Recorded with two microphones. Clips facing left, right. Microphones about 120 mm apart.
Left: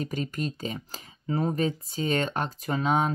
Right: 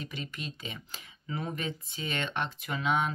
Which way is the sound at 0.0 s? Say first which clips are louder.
Left 9 dB; 45° left (ahead or behind).